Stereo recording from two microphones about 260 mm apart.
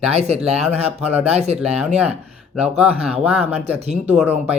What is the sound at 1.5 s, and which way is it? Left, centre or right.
Speech, centre.